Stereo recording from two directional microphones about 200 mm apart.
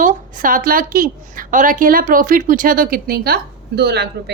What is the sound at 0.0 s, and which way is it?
A woman's voice, 40° right (ahead or behind).